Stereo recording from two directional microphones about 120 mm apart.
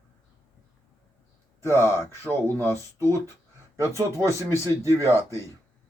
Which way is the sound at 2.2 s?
25° right (ahead or behind).